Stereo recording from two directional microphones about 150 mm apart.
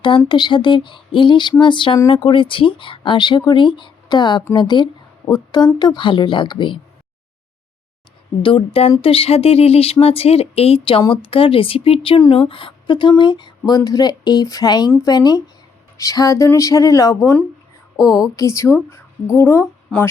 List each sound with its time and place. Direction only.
0.3 s speech: 30° left (ahead or behind)
8.4 s a woman's voice: 35° left (ahead or behind); by 20.1 s 15° left (ahead or behind)